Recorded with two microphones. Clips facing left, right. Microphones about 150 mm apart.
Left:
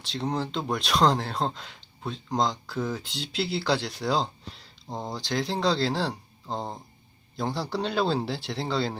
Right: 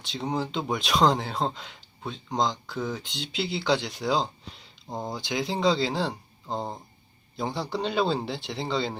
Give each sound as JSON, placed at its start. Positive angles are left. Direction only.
{"t": 0.0, "sound": "speech", "side_deg": 0}